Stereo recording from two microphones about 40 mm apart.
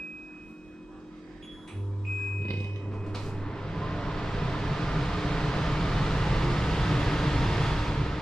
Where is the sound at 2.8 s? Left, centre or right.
Centre.